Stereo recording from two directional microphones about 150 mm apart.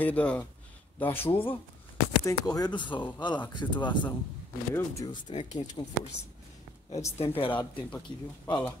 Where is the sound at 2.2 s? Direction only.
25° left (ahead or behind).